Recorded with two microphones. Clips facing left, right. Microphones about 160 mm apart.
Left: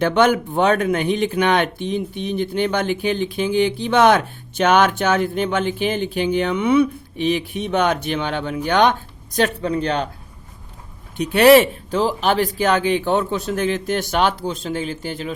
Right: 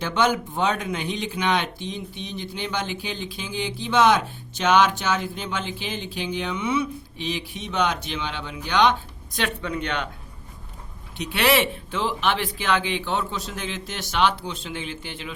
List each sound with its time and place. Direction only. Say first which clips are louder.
0.0 s speech: left 7 dB; 60° left (ahead or behind)
9.6 s speech: left 7 dB; 35° left (ahead or behind)
11.2 s speech: left 10 dB; 45° left (ahead or behind)